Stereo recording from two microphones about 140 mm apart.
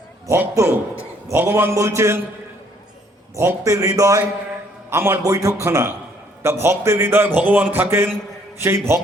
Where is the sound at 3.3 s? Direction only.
20° right (ahead or behind).